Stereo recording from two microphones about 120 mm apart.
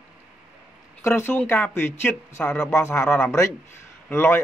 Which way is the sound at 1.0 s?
20° left (ahead or behind).